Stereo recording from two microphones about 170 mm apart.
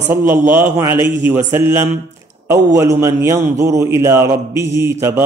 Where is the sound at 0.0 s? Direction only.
15° right (ahead or behind).